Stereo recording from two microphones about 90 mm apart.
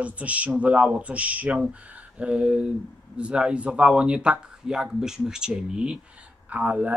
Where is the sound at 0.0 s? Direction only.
15° right (ahead or behind).